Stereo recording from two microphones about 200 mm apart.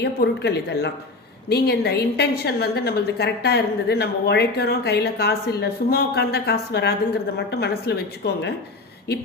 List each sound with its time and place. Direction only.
0.0 s a woman's voice: 55° left (ahead or behind)